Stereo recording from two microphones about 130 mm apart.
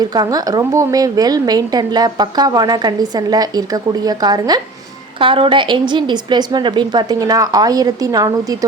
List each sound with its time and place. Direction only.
0.0 s a woman's voice: 30° right (ahead or behind)
5.2 s a woman's voice: 40° right (ahead or behind)